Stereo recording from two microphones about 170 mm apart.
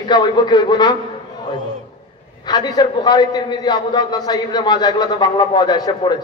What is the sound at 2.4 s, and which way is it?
A man's voice, 25° left (ahead or behind).